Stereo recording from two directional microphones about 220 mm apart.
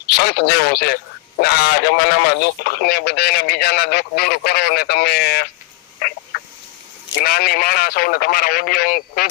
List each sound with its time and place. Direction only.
0.2 s a man's voice: 50° left (ahead or behind)
7.2 s a man's voice: 45° left (ahead or behind)